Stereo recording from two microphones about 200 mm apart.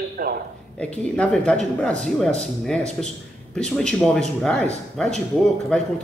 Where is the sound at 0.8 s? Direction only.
5° left (ahead or behind).